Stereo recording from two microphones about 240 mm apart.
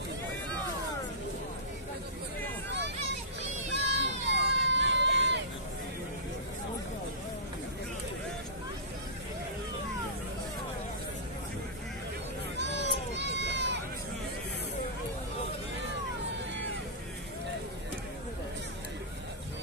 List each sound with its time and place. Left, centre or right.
3.7 s a sound: right
12.5 s children playing: right
13.1 s run: right